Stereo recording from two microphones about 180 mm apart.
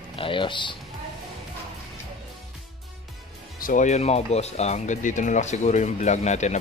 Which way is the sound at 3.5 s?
45° left (ahead or behind).